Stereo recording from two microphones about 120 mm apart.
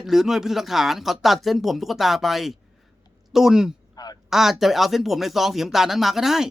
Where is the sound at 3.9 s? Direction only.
35° left (ahead or behind).